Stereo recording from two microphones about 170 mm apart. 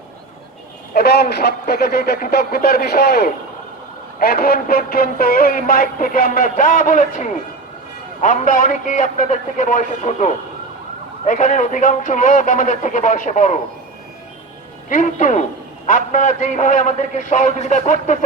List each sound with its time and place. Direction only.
0.9 s a man's voice: 75° left (ahead or behind); by 13.6 s 45° left (ahead or behind)
14.8 s a man's voice: 45° left (ahead or behind)